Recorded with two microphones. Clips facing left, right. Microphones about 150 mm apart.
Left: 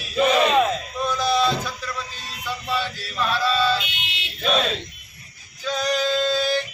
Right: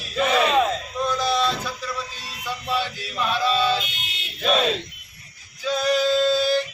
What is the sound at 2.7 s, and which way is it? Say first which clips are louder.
Male singing: right 1 dB; 15° right (ahead or behind).